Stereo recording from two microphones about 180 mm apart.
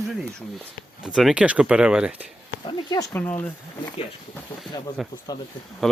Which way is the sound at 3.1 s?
10° left (ahead or behind).